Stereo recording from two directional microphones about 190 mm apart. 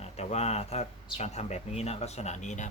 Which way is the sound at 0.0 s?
35° left (ahead or behind).